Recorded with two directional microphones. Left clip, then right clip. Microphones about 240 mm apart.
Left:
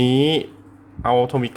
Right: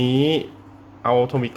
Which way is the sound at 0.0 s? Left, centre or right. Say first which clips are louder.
Left 2 dB; centre.